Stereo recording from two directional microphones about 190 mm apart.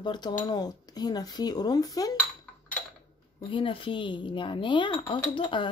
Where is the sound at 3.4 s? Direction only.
25° left (ahead or behind).